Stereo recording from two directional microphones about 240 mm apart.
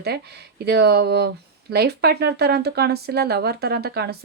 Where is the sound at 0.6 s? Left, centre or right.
Right.